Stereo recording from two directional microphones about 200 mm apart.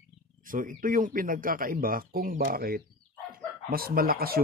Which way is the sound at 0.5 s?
40° right (ahead or behind).